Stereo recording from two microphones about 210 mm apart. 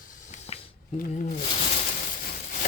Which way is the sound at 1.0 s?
35° left (ahead or behind).